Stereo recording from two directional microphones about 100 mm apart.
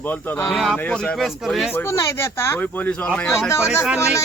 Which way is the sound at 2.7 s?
15° left (ahead or behind).